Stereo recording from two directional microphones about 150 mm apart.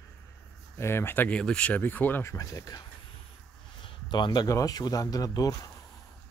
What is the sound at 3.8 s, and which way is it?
Speech, 30° left (ahead or behind).